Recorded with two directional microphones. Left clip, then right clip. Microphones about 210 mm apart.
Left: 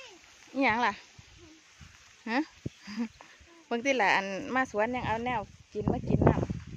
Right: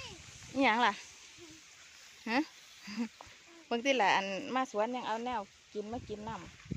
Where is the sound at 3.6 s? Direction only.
15° left (ahead or behind).